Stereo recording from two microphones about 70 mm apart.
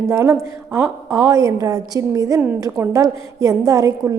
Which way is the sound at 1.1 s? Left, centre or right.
Right.